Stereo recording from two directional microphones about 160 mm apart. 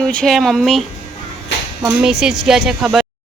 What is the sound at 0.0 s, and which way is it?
Speech, 5° left (ahead or behind).